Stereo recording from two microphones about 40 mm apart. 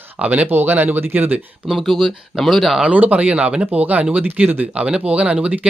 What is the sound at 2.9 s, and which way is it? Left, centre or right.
Speech, right.